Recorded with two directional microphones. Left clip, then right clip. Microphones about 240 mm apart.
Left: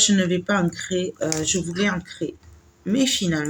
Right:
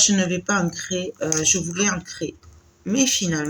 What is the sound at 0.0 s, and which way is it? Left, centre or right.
Speech, centre.